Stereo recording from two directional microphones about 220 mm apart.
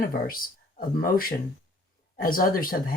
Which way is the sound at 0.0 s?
40° left (ahead or behind).